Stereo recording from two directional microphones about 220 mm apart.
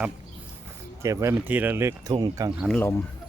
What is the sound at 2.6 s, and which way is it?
Speech, 5° left (ahead or behind).